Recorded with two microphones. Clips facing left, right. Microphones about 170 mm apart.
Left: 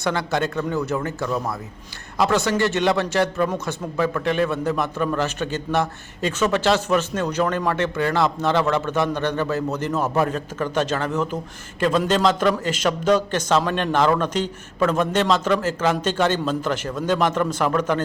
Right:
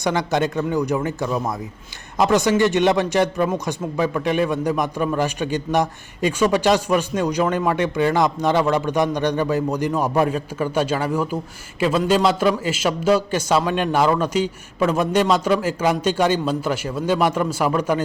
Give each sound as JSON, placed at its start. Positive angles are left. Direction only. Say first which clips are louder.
{"t": 0.0, "sound": "speech", "louder": "right 2 dB", "side_deg": -15}